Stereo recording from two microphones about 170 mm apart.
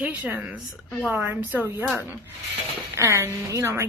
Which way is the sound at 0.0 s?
10° right (ahead or behind).